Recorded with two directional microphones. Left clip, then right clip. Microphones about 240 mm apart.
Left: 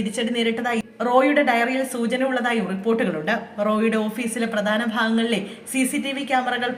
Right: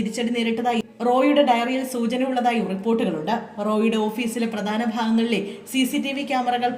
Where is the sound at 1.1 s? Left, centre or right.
Left.